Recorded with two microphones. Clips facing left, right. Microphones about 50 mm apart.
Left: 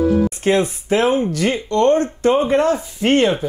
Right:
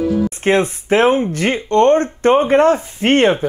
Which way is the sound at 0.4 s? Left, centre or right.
Right.